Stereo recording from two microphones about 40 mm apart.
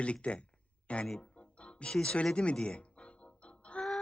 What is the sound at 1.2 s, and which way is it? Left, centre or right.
Music, left.